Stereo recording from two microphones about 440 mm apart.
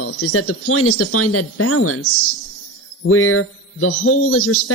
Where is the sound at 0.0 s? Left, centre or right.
Left.